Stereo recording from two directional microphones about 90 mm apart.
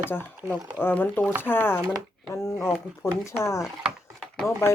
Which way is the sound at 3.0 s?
35° left (ahead or behind).